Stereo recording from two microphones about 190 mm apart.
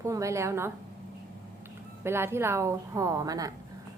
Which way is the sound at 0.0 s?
15° right (ahead or behind).